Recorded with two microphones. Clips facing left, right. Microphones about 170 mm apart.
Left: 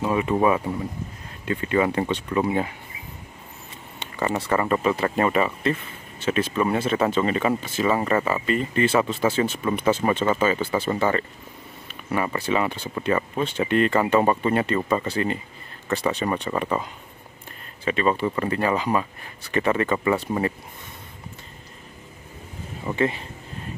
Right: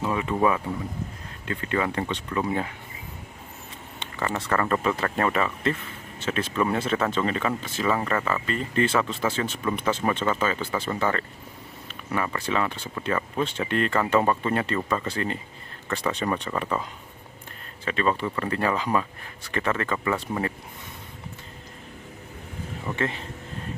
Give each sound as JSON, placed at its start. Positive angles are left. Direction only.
{"t": 0.1, "sound": "speech", "side_deg": 15}
{"t": 4.2, "sound": "speech", "side_deg": 15}
{"t": 17.8, "sound": "speech", "side_deg": 10}
{"t": 22.8, "sound": "speech", "side_deg": 10}